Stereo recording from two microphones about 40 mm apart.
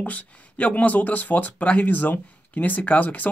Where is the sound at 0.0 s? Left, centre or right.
Left.